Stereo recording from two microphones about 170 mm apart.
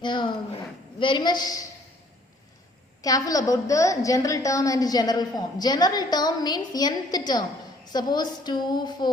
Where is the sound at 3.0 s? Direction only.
20° left (ahead or behind).